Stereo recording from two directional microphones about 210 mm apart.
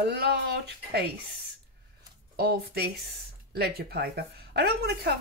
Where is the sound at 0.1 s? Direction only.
50° right (ahead or behind).